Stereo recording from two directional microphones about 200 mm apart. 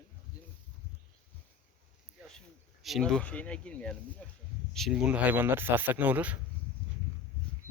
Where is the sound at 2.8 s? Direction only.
Centre (ahead or behind).